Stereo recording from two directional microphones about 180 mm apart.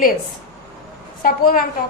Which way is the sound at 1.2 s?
55° left (ahead or behind).